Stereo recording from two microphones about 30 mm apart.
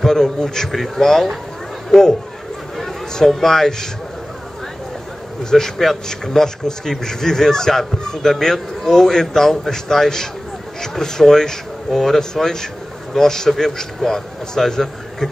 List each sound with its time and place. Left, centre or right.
0.0 s a man's voice: centre
0.7 s a man's voice: centre
3.3 s a man's voice: centre
5.4 s a man's voice: centre